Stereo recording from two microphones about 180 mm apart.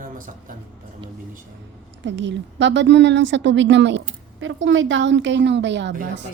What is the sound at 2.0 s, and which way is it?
A woman's voice, 90° right.